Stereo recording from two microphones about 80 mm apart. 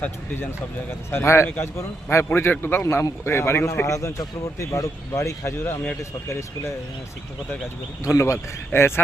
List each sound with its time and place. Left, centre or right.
1.1 s a man's voice: left
8.0 s a man's voice: left